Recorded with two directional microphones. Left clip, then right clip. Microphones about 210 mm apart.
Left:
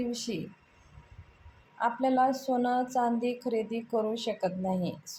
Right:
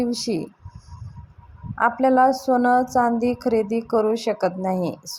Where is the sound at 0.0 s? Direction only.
40° right (ahead or behind).